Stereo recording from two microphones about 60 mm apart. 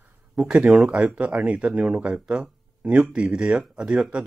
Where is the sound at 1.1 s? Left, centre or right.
Right.